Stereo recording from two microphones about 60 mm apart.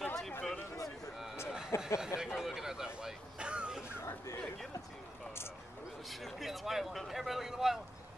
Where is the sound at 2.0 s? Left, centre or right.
Centre.